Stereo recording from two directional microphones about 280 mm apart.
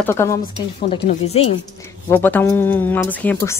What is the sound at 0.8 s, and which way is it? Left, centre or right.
Speech, centre.